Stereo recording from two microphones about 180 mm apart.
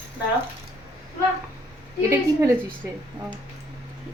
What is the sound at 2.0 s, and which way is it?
Speech, 15° right (ahead or behind).